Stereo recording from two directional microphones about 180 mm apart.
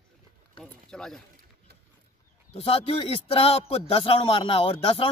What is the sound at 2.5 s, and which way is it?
A man's voice, 30° left (ahead or behind).